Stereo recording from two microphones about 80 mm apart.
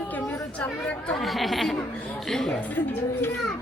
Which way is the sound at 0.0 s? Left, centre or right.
Left.